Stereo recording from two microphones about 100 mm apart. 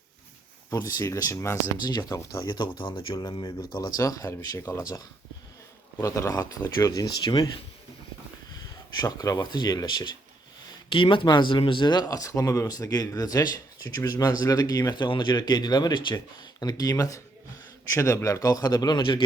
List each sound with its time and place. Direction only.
0.7 s speech: 35° left (ahead or behind)
1.8 s speech: 45° left (ahead or behind)
2.5 s speech: 55° left (ahead or behind)
10.8 s speech: 60° left (ahead or behind)